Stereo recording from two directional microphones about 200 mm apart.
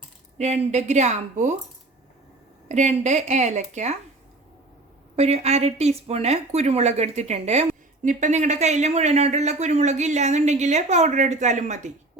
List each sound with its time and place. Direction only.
0.3 s speech: 35° right (ahead or behind)
2.6 s speech: 35° right (ahead or behind)
5.1 s speech: 30° right (ahead or behind)